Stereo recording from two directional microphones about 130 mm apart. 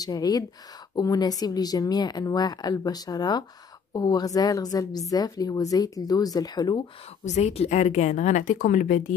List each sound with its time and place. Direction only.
0.0 s a woman's voice: 30° left (ahead or behind)
7.2 s a woman's voice: 60° left (ahead or behind); by 9.0 s 90° left